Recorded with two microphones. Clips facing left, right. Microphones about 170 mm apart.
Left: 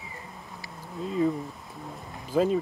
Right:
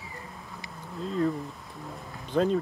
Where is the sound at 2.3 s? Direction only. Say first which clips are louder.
Left 1 dB; 5° left (ahead or behind).